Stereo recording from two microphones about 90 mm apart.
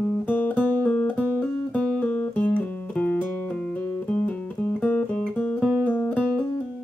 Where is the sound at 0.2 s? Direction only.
20° left (ahead or behind).